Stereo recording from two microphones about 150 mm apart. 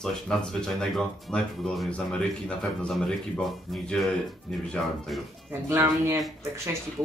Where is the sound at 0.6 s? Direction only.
5° left (ahead or behind).